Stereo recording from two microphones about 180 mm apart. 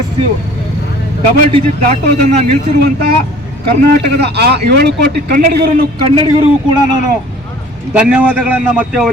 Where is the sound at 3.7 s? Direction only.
60° right (ahead or behind).